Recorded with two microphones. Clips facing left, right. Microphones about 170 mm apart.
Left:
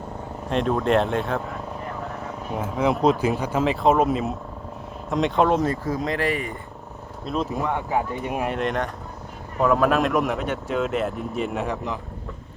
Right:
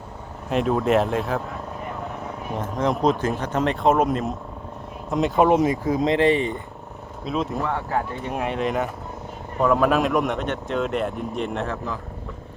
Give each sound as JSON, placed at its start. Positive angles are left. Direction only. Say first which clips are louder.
{"t": 0.5, "sound": "speech", "louder": "right 1 dB", "side_deg": 0}
{"t": 2.5, "sound": "speech", "louder": "left 1 dB", "side_deg": 5}
{"t": 5.5, "sound": "speech", "louder": "right 3 dB", "side_deg": -15}
{"t": 7.3, "sound": "speech", "louder": "right 1 dB", "side_deg": 0}
{"t": 7.6, "sound": "speech", "louder": "left 1 dB", "side_deg": 15}
{"t": 8.4, "sound": "speech", "louder": "right 2 dB", "side_deg": 0}
{"t": 11.6, "sound": "speech", "louder": "left 1 dB", "side_deg": 15}